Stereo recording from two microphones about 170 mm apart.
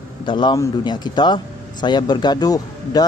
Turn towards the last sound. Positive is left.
turn(degrees=20)  # may be behind; listen again after turning